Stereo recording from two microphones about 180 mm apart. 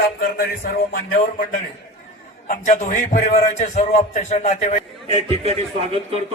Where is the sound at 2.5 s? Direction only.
45° left (ahead or behind).